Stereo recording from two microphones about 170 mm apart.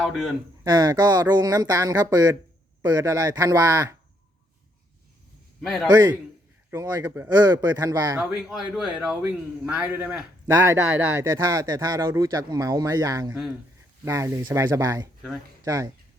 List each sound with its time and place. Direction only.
0.0 s speech: centre (ahead or behind)
0.6 s speech: 25° right (ahead or behind)
5.6 s speech: centre (ahead or behind)
5.9 s speech: 25° right (ahead or behind)
8.2 s speech: 5° right (ahead or behind); by 15.9 s 20° right (ahead or behind)